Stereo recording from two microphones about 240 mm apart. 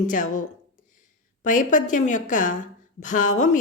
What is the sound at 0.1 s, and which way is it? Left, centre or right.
A woman's voice, left.